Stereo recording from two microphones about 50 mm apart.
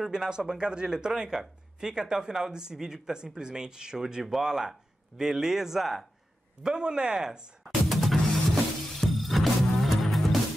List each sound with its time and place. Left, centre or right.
0.0 s speech: centre
7.6 s music: centre